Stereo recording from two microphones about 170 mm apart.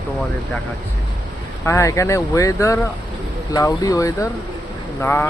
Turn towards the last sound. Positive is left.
turn(degrees=15)  # may be behind; listen again after turning